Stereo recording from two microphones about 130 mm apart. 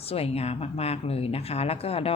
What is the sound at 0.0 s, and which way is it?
Speech, 50° left (ahead or behind).